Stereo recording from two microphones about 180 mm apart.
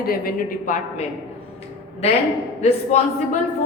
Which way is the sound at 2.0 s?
35° left (ahead or behind).